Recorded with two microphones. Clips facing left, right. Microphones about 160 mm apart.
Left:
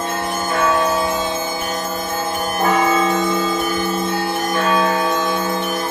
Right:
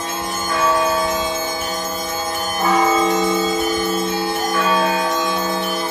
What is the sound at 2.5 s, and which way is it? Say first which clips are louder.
Change ringing: even; 55° left (ahead or behind).